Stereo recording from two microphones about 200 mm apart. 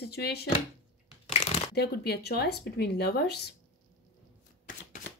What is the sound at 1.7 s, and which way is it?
A woman's voice, 55° left (ahead or behind).